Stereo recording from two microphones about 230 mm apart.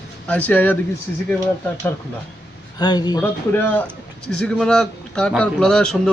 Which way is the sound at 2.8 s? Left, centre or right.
Centre.